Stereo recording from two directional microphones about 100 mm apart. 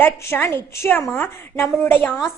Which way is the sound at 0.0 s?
20° left (ahead or behind).